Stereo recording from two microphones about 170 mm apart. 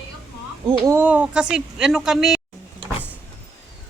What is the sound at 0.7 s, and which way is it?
Speech, 30° right (ahead or behind).